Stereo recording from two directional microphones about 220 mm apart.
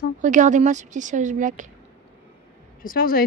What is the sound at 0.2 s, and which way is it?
A woman's voice, 35° right (ahead or behind).